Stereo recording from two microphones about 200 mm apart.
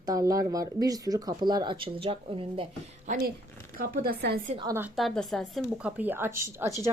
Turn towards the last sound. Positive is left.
turn(degrees=-15)  # may be behind; listen again after turning